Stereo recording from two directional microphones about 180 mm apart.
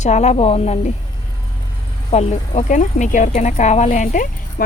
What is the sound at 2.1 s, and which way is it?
Speech, 40° left (ahead or behind).